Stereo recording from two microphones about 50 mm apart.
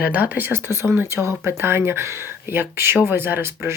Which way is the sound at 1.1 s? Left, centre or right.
Right.